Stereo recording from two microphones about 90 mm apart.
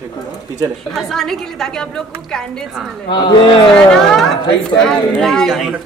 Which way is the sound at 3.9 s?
5° left (ahead or behind).